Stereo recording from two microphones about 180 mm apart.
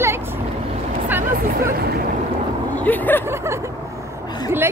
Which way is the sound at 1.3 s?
50° right (ahead or behind).